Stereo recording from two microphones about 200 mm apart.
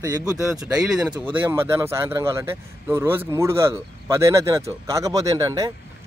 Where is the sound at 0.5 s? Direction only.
5° right (ahead or behind).